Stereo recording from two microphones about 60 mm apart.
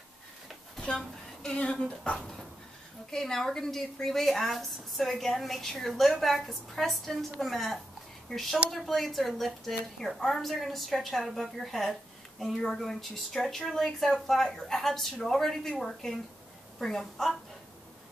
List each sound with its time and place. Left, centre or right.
0.7 s a sound: centre
1.6 s speech: centre
3.1 s a woman's voice: centre